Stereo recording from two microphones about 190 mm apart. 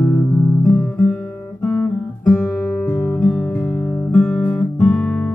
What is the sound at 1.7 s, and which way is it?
Guitar, 5° left (ahead or behind).